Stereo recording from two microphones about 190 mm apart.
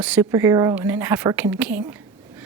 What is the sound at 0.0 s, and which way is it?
Speech, 5° right (ahead or behind).